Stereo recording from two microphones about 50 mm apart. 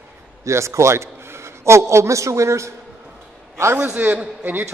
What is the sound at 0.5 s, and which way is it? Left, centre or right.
A man's voice, right.